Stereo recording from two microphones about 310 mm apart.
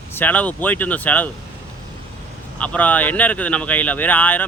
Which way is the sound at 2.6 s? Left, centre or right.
Centre.